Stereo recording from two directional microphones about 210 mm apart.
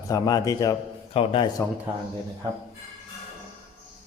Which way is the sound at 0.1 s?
20° left (ahead or behind).